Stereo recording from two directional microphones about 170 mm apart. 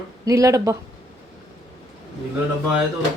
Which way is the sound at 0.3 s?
20° right (ahead or behind).